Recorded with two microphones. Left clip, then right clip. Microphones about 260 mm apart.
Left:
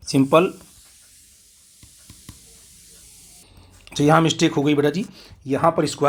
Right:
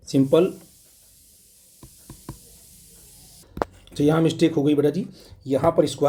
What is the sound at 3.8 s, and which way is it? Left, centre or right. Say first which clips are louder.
Speech: left 4 dB; centre.